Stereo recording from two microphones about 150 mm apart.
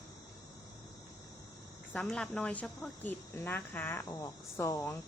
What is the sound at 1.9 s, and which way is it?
A woman's voice, 10° left (ahead or behind).